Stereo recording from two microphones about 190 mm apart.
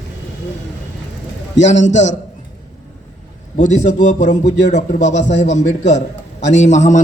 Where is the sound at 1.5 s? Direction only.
70° left (ahead or behind).